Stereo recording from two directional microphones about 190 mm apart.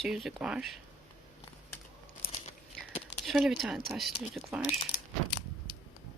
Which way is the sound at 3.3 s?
Centre (ahead or behind).